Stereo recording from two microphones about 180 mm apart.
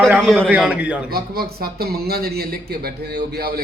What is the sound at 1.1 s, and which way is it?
A man's voice, 55° right (ahead or behind).